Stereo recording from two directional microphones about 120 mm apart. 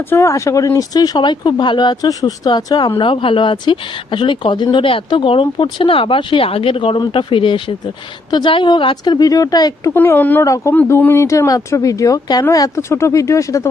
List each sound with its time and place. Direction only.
0.1 s speech: 25° left (ahead or behind)
9.9 s speech: 20° left (ahead or behind)
10.4 s speech: 25° left (ahead or behind)